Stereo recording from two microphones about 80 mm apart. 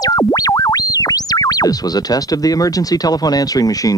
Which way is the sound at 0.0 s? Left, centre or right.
Left.